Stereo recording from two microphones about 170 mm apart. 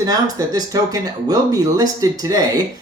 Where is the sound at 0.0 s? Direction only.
20° right (ahead or behind).